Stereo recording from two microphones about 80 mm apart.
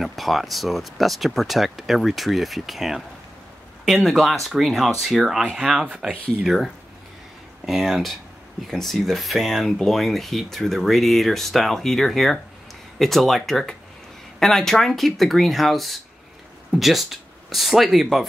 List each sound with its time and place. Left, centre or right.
0.0 s speech: centre